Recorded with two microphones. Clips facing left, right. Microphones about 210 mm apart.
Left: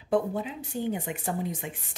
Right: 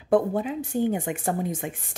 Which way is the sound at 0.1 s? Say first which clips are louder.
Right 5 dB; 50° right (ahead or behind).